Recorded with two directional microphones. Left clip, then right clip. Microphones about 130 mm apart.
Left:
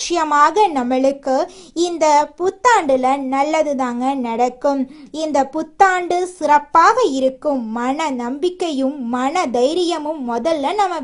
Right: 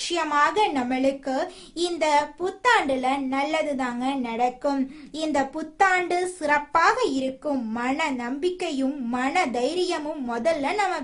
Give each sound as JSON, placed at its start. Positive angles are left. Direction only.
{"t": 0.0, "sound": "speech", "side_deg": 45}